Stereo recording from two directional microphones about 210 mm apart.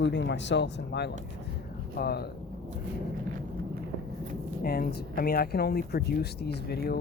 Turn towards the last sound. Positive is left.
turn(degrees=50)  # may be behind; listen again after turning